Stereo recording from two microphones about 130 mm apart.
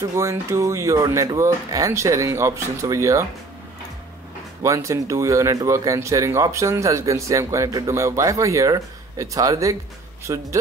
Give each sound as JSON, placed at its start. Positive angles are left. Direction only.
{"t": 0.1, "sound": "speech", "side_deg": -25}
{"t": 4.6, "sound": "speech", "side_deg": -25}